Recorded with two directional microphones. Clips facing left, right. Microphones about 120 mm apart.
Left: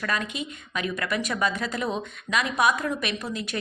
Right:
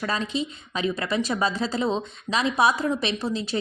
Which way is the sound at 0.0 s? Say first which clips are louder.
Right 3 dB; 25° right (ahead or behind).